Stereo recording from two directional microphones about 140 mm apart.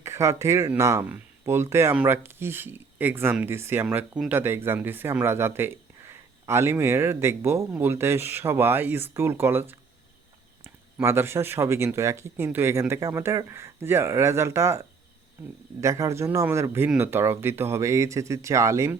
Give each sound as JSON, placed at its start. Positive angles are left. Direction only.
{"t": 0.0, "sound": "speech", "side_deg": -20}
{"t": 11.0, "sound": "speech", "side_deg": -15}